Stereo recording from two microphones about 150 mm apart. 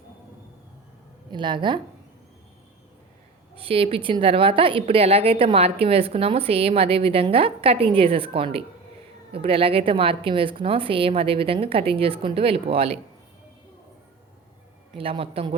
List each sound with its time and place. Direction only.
1.3 s a woman's voice: 30° right (ahead or behind)
3.5 s a woman's voice: 40° right (ahead or behind)
14.9 s a woman's voice: 40° right (ahead or behind)